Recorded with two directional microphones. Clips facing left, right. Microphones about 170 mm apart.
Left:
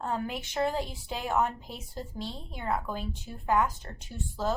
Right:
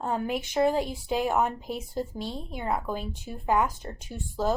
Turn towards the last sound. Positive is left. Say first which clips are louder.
# right 4 dB
turn(degrees=-15)  # may be behind; listen again after turning